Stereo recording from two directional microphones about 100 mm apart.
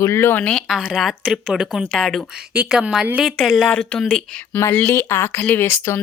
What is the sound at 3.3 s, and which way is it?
A woman's voice, centre (ahead or behind).